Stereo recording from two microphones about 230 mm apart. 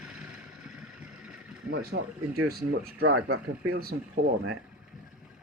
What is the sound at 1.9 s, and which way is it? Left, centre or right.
Speech, right.